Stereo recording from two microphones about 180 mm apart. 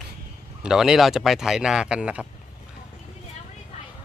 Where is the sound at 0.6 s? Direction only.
5° right (ahead or behind).